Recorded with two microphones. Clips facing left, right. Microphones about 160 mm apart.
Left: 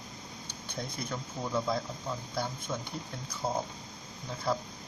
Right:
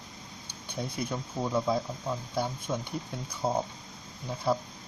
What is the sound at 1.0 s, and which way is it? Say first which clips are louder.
Speech: right 6 dB; 15° right (ahead or behind).